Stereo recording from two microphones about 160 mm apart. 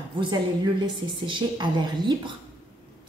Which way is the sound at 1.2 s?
30° right (ahead or behind).